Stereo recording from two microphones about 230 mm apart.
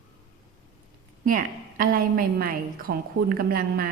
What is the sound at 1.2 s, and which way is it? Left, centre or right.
A woman's voice, right.